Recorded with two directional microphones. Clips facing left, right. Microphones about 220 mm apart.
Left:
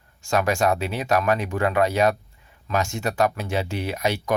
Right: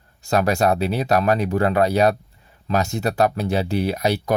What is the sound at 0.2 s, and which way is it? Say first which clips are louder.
Speech: right 3 dB; 35° right (ahead or behind).